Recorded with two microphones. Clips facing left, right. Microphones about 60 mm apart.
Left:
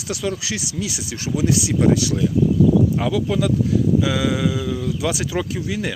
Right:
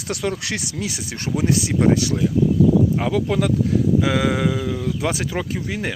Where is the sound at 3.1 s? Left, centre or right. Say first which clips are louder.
Even; right.